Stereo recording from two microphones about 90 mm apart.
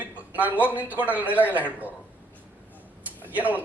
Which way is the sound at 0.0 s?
15° right (ahead or behind).